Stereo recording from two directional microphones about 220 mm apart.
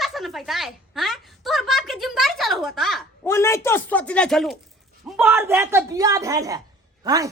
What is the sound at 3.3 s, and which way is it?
A man's voice, 10° left (ahead or behind).